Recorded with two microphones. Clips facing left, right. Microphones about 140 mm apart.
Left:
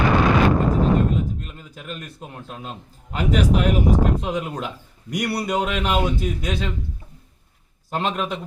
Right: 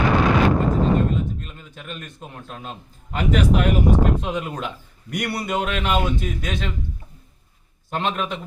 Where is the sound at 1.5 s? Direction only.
5° left (ahead or behind).